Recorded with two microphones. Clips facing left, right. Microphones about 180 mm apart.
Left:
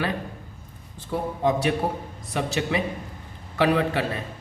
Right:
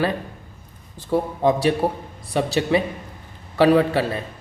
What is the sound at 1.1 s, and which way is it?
Speech, 35° right (ahead or behind).